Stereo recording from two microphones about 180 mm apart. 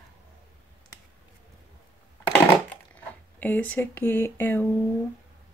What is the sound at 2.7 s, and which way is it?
Speech, 10° left (ahead or behind).